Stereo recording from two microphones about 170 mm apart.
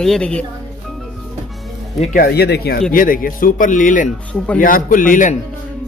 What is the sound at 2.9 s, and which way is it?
A man's voice, 55° left (ahead or behind).